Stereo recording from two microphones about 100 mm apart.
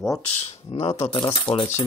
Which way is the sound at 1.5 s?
50° left (ahead or behind).